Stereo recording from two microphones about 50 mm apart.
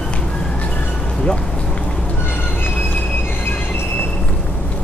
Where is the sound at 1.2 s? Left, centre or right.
Centre.